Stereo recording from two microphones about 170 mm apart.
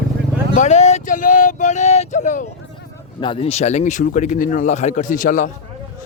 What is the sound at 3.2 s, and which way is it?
Speech, 30° left (ahead or behind).